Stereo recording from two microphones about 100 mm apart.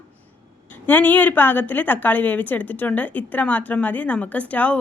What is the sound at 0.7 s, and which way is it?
A woman's voice, 15° left (ahead or behind).